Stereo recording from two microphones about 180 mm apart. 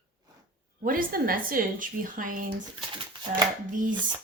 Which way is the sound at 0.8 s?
50° right (ahead or behind).